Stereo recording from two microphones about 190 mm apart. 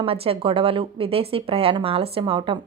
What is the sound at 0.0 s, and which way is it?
A woman's voice, 30° right (ahead or behind).